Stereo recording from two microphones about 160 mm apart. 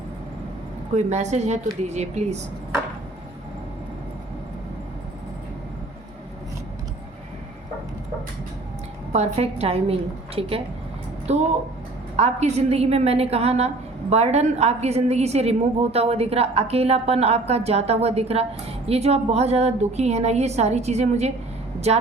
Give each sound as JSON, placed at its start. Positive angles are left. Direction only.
{"t": 0.9, "sound": "a woman's voice", "side_deg": -45}
{"t": 9.1, "sound": "a woman's voice", "side_deg": -40}